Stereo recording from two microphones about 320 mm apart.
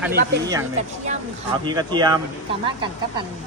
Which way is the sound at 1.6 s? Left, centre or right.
Centre.